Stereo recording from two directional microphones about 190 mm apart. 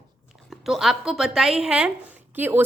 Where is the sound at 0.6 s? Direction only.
Centre (ahead or behind).